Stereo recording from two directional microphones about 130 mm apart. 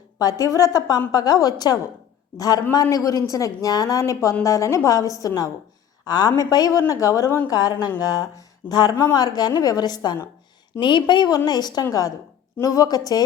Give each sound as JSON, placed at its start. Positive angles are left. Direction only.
{"t": 0.2, "sound": "a woman's voice", "side_deg": 30}